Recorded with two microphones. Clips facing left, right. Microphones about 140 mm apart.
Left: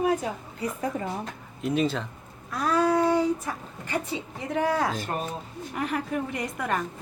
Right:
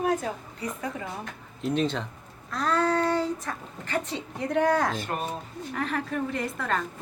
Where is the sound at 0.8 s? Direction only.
35° left (ahead or behind).